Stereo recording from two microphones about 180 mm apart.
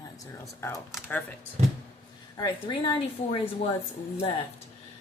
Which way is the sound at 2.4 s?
25° left (ahead or behind).